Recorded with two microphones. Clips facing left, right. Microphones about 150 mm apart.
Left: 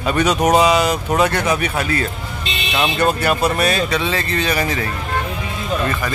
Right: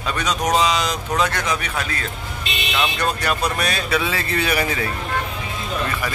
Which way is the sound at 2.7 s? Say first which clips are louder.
Left 5 dB; 25° left (ahead or behind).